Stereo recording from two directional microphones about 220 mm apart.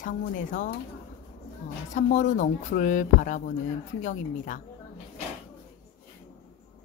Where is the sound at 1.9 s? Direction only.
35° left (ahead or behind).